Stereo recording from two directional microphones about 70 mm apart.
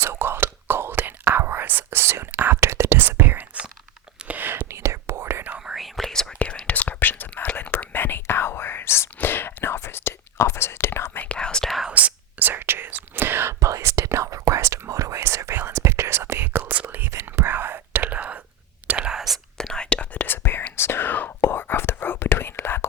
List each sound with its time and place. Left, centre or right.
0.0 s whispering: right
4.7 s whispering: right
5.7 s whispering: centre
6.4 s whispering: centre; by 11.2 s left
11.2 s whispering: centre
11.9 s whispering: right
13.6 s whispering: right; by 19.2 s centre
19.2 s whispering: centre
20.1 s whispering: left